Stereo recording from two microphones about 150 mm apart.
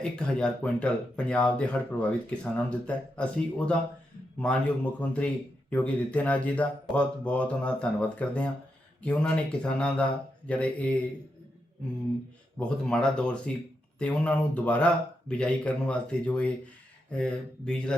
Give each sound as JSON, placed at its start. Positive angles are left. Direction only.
{"t": 0.0, "sound": "speech", "side_deg": 5}
{"t": 12.5, "sound": "speech", "side_deg": 5}